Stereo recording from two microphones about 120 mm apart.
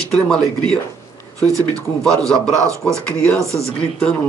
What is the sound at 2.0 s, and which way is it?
Speech, 5° left (ahead or behind).